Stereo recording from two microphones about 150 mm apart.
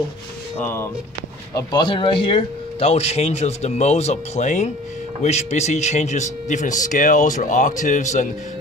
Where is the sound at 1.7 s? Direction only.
30° left (ahead or behind).